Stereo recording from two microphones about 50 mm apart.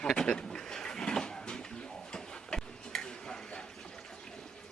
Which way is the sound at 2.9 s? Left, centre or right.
Centre.